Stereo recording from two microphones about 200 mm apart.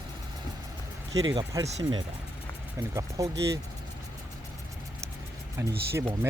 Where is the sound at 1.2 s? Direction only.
20° right (ahead or behind).